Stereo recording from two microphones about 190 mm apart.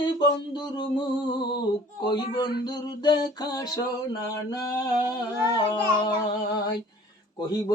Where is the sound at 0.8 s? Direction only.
25° left (ahead or behind).